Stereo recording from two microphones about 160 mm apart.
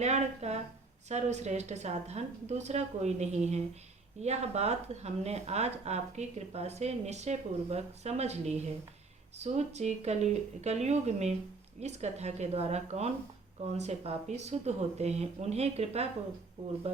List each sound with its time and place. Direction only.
0.0 s speech: 45° right (ahead or behind)